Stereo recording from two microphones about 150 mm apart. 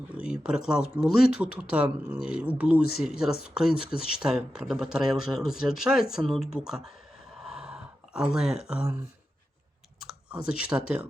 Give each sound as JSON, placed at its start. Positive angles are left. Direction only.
{"t": 0.2, "sound": "speech", "side_deg": -5}
{"t": 7.3, "sound": "a sound", "side_deg": -5}
{"t": 10.5, "sound": "speech", "side_deg": -5}